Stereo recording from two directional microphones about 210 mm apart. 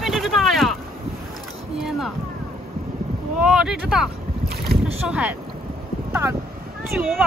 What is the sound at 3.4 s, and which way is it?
Speech, 5° right (ahead or behind).